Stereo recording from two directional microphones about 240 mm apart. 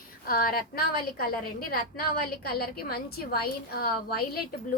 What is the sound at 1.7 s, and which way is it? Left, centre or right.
A woman's voice, left.